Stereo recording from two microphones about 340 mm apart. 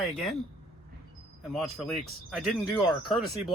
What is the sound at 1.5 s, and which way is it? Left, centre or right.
Speech, centre.